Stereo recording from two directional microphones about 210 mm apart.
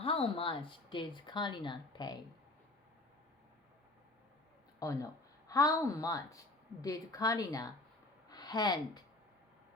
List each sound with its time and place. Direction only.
0.0 s speech: 25° left (ahead or behind)
4.8 s a woman's voice: 15° left (ahead or behind)